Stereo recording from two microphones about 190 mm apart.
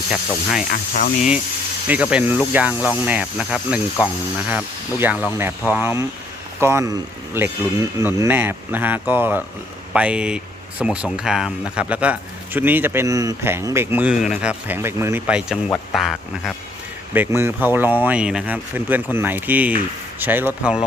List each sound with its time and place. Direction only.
0.7 s speech: 50° left (ahead or behind)
1.9 s speech: 5° right (ahead or behind)